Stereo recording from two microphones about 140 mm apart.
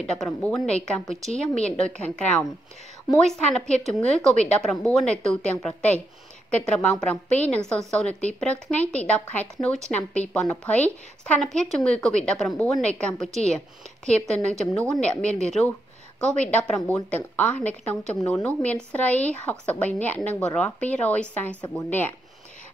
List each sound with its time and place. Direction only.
0.0 s a woman's voice: centre (ahead or behind)
3.7 s a woman's voice: 5° left (ahead or behind)